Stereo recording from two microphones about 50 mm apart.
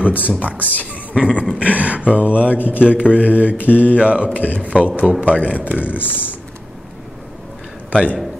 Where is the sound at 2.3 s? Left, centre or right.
Left.